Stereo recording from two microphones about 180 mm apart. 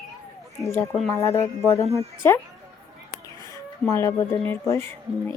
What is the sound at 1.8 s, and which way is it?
Speech, 35° right (ahead or behind).